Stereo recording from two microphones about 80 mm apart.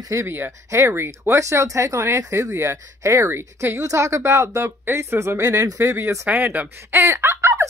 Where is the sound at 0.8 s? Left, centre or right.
Right.